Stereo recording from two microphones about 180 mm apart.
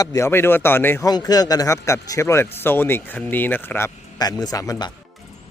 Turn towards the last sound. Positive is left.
turn(degrees=20)  # may be behind; listen again after turning